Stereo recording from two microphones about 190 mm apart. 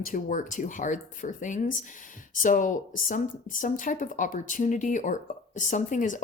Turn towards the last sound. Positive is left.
turn(degrees=40)  # may be behind; listen again after turning